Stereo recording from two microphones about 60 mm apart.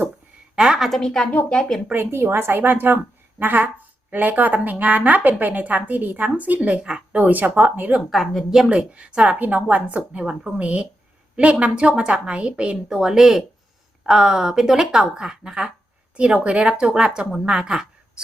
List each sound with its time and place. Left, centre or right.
0.5 s a woman's voice: centre
0.9 s speech: centre
1.2 s speech: left
1.9 s a woman's voice: right; by 7.3 s centre
7.3 s speech: right
8.1 s speech: centre
8.7 s speech: right